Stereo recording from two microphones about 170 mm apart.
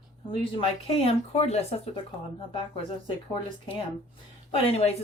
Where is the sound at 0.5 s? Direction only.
35° left (ahead or behind).